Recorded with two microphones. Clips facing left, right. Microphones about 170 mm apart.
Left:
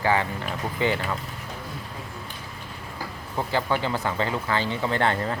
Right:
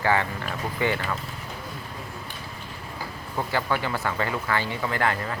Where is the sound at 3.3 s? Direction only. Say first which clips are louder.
Left 1 dB; 20° left (ahead or behind).